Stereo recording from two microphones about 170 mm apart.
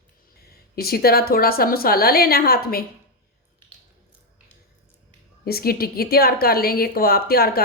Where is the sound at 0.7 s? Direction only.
65° left (ahead or behind).